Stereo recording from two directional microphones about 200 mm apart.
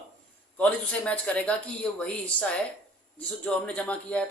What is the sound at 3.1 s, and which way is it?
Speech, 5° left (ahead or behind).